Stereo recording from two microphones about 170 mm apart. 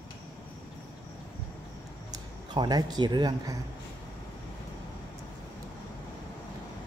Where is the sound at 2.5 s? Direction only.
25° right (ahead or behind).